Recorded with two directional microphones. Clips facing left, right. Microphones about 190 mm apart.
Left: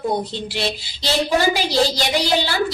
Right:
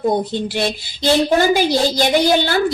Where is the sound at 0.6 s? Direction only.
50° right (ahead or behind).